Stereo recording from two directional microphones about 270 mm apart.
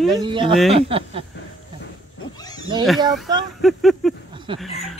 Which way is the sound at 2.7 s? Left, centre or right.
Centre.